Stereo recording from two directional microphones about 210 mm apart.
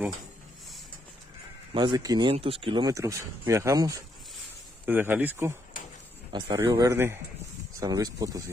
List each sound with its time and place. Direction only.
1.7 s speech: 20° right (ahead or behind)
6.3 s a man's voice: 20° right (ahead or behind)